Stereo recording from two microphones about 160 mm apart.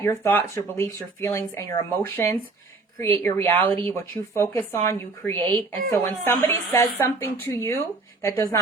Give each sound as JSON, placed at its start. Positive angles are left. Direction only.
{"t": 0.0, "sound": "a woman's voice", "side_deg": 15}